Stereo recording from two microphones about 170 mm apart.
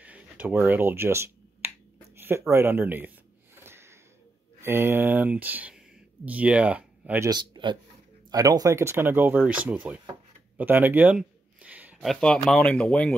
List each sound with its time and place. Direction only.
0.0 s finger snapping: 10° right (ahead or behind)
2.1 s a sound: 15° right (ahead or behind)
2.5 s speech: 15° right (ahead or behind)
3.6 s a sound: 15° right (ahead or behind)
4.6 s speech: 15° right (ahead or behind)
7.2 s a man's voice: 25° right (ahead or behind); by 13.1 s 5° left (ahead or behind)